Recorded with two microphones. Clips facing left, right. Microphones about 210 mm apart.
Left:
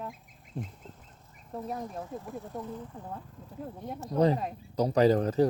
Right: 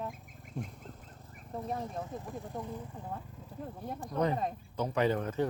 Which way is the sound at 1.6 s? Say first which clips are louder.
Even; 5° left (ahead or behind).